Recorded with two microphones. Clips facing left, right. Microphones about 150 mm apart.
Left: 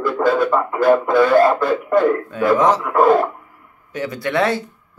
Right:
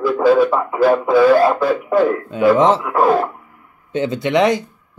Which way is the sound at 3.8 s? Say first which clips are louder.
Right 5 dB; 25° right (ahead or behind).